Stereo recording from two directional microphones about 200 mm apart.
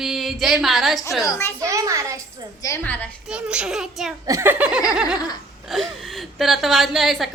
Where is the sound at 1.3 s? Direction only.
10° left (ahead or behind).